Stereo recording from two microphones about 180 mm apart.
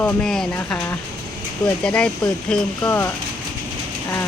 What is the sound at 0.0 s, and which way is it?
Speech, 5° left (ahead or behind).